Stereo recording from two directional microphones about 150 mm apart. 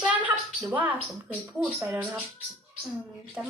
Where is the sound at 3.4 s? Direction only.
10° right (ahead or behind).